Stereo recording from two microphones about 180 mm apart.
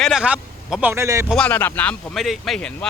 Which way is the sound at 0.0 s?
5° right (ahead or behind).